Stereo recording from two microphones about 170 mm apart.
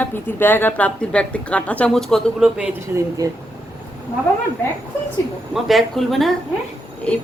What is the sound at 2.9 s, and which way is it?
Speech, 20° right (ahead or behind).